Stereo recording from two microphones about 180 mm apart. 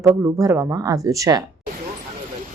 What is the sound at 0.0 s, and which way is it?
Speech, 20° right (ahead or behind).